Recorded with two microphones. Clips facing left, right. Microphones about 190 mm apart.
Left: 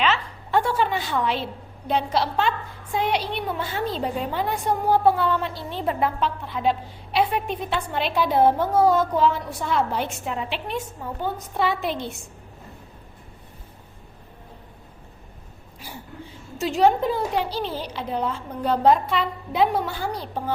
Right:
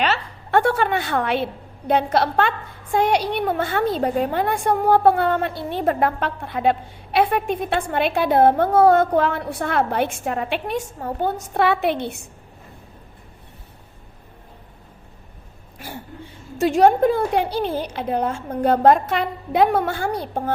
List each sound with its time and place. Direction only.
0.0 s a sound: 40° right (ahead or behind)
0.6 s a woman's voice: 60° right (ahead or behind); by 11.1 s 45° right (ahead or behind)
11.3 s a woman's voice: 65° right (ahead or behind)
15.8 s a woman's voice: 60° right (ahead or behind)